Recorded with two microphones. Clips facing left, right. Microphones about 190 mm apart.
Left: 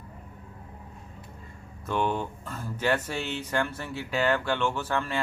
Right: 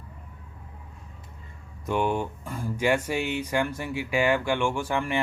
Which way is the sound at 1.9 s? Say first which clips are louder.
Right 2 dB; 10° right (ahead or behind).